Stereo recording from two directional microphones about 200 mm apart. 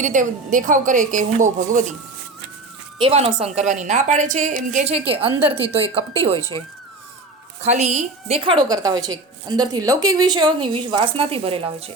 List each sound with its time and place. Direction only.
0.0 s a woman's voice: 40° right (ahead or behind)
3.0 s a woman's voice: 30° right (ahead or behind)
5.3 s a woman's voice: 10° right (ahead or behind)
5.7 s a woman's voice: 30° right (ahead or behind)
7.6 s a woman's voice: 35° right (ahead or behind)